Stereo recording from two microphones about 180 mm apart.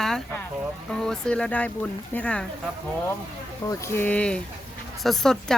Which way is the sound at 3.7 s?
15° left (ahead or behind).